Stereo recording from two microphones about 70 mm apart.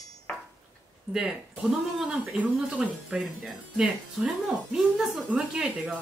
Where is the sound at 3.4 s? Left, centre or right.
Centre.